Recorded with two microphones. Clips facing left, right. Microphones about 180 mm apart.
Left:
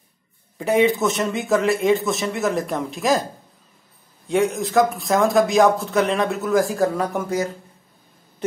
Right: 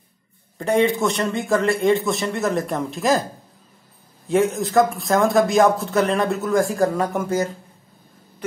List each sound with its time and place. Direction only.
0.6 s speech: 5° left (ahead or behind)
4.3 s speech: centre (ahead or behind)